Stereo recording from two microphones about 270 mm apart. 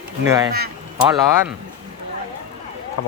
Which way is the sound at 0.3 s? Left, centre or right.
Centre.